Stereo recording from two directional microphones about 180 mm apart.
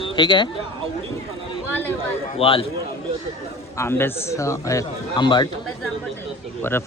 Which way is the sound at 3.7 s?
15° left (ahead or behind).